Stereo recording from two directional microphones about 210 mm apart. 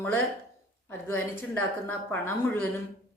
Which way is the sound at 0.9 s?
10° left (ahead or behind).